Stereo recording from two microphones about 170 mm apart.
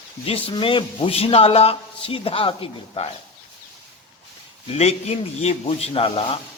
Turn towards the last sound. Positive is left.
turn(degrees=35)  # may be behind; listen again after turning